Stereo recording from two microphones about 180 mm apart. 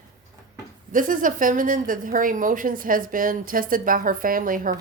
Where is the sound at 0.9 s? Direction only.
50° right (ahead or behind).